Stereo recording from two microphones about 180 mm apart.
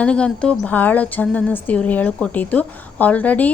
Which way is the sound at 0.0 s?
5° left (ahead or behind).